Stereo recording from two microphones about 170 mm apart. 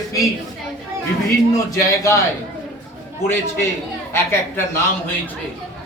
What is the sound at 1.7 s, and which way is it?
Speech, 20° left (ahead or behind).